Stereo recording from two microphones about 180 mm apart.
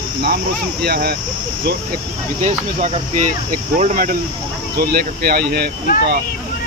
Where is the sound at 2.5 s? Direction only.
40° right (ahead or behind).